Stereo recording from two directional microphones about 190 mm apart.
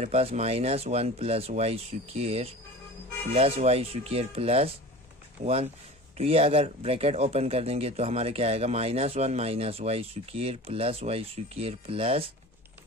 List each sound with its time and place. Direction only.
0.0 s speech: 35° right (ahead or behind)